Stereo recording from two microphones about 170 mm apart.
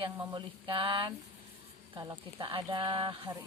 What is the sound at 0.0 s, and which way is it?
Speech, 25° right (ahead or behind).